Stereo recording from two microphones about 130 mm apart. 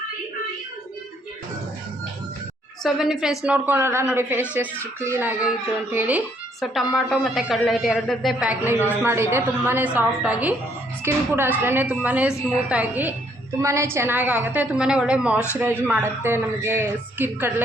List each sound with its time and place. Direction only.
2.8 s speech: 5° right (ahead or behind)
6.6 s a woman's voice: centre (ahead or behind)
13.6 s speech: 20° right (ahead or behind)